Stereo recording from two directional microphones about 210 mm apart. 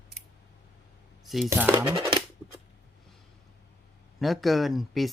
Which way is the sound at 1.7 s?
20° right (ahead or behind).